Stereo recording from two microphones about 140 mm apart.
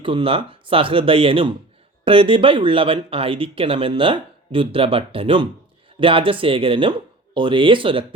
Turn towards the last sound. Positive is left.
turn(degrees=-40)  # may be behind; listen again after turning